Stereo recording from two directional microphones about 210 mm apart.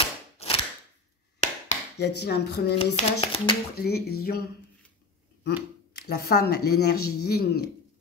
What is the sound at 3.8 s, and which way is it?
Speech, 50° left (ahead or behind).